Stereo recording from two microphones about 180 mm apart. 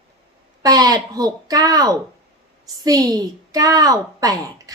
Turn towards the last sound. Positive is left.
turn(degrees=-20)  # may be behind; listen again after turning